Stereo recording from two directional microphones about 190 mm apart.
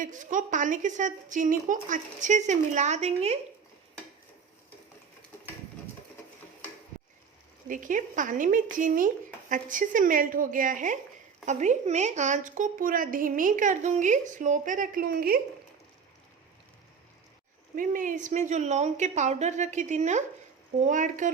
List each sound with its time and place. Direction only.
0.0 s speech: 40° right (ahead or behind)
7.7 s a woman's voice: 45° right (ahead or behind)
17.7 s speech: 45° right (ahead or behind)